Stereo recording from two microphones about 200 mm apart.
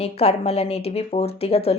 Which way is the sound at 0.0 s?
30° left (ahead or behind).